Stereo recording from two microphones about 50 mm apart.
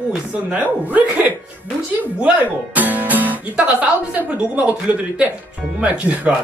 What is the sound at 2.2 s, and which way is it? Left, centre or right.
Speech, right.